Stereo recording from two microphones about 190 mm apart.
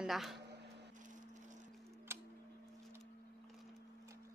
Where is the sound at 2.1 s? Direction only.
15° right (ahead or behind).